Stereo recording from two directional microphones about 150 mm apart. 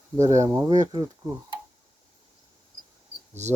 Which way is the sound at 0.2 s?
20° right (ahead or behind).